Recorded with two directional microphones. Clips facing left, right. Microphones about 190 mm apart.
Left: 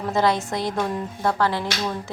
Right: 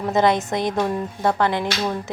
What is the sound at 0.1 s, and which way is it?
A woman's voice, 20° right (ahead or behind).